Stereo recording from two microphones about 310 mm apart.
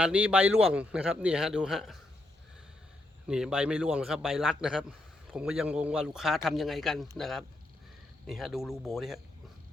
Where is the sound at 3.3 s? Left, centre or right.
Centre.